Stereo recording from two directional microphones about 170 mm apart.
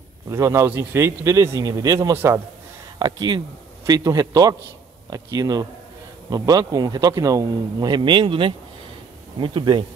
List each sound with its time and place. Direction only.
0.3 s a man's voice: 15° right (ahead or behind)